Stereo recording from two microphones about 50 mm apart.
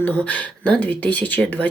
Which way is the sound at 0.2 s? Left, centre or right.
Left.